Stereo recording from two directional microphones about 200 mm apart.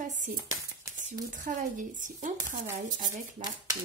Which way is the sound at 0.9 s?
15° right (ahead or behind).